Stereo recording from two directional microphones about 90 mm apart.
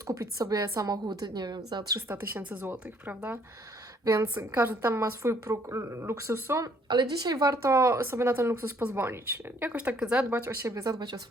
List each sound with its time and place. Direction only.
0.1 s a woman's voice: 35° right (ahead or behind)
2.0 s speech: 25° right (ahead or behind)
4.0 s speech: 40° right (ahead or behind)
4.4 s speech: 25° right (ahead or behind)
6.8 s a woman's voice: 50° right (ahead or behind); by 10.4 s 15° right (ahead or behind)
10.6 s speech: 35° right (ahead or behind)